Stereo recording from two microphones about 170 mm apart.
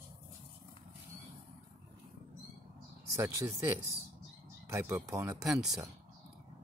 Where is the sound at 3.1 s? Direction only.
15° right (ahead or behind).